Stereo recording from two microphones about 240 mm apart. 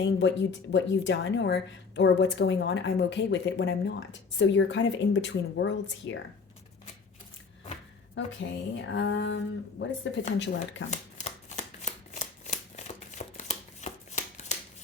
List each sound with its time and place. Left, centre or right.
0.0 s speech: left
8.7 s speech: left
10.9 s shuffling cards: left